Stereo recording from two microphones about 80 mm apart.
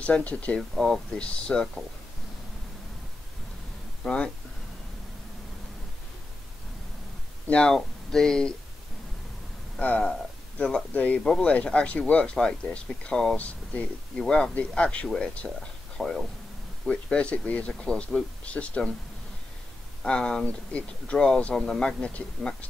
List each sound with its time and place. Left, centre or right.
0.0 s speech: centre
0.6 s speech: centre
4.0 s speech: centre
7.4 s speech: centre
9.8 s speech: centre
20.0 s speech: centre